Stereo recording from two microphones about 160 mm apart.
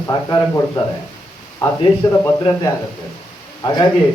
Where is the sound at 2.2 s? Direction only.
20° left (ahead or behind).